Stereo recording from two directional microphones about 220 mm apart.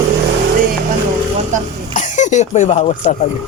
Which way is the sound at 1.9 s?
35° left (ahead or behind).